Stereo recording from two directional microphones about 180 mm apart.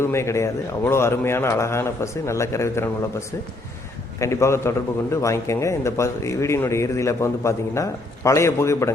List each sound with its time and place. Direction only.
0.0 s speech: 15° left (ahead or behind)